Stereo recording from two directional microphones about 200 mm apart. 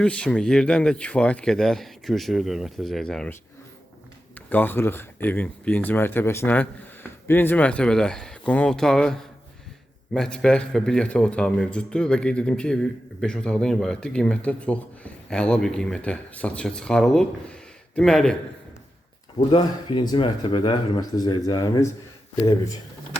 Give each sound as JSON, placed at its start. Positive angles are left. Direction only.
{"t": 0.0, "sound": "a man's voice", "side_deg": 5}
{"t": 4.4, "sound": "a man's voice", "side_deg": 10}
{"t": 19.5, "sound": "speech", "side_deg": 25}